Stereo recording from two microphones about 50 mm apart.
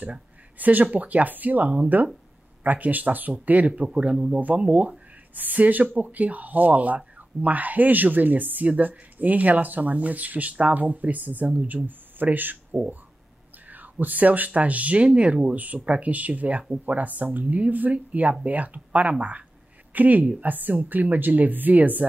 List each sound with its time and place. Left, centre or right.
0.0 s speech: right
3.8 s speech: centre
4.4 s speech: right
13.7 s speech: right